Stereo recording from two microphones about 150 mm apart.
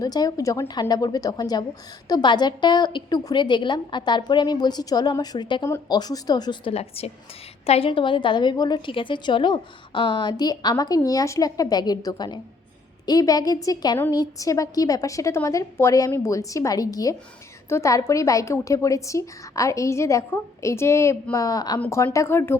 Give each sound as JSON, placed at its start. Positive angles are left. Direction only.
{"t": 0.0, "sound": "a woman's voice", "side_deg": 25}